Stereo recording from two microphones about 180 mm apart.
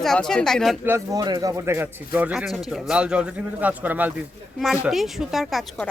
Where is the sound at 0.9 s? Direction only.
20° right (ahead or behind).